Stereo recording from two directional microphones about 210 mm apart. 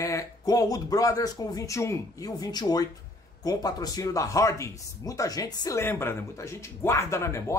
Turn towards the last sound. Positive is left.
turn(degrees=15)  # may be behind; listen again after turning